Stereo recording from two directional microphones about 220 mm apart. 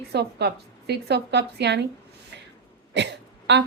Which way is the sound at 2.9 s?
55° right (ahead or behind).